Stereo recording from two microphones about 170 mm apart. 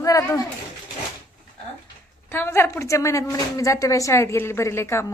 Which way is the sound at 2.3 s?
15° left (ahead or behind).